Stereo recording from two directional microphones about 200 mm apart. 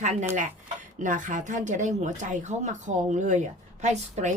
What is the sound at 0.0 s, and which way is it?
Speech, 35° right (ahead or behind).